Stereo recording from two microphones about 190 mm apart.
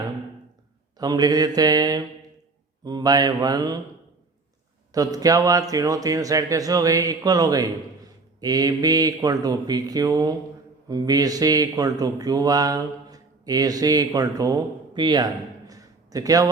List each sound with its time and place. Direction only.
0.9 s speech: 20° right (ahead or behind)
4.9 s speech: 20° right (ahead or behind)